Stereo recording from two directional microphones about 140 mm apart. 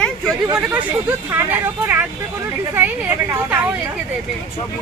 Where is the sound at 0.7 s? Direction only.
15° right (ahead or behind).